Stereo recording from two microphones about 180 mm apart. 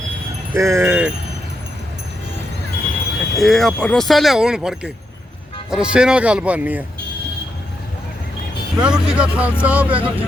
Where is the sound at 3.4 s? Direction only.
Centre (ahead or behind).